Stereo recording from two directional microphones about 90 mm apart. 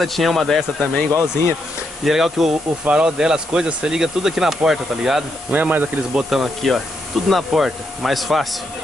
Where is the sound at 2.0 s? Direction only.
5° right (ahead or behind).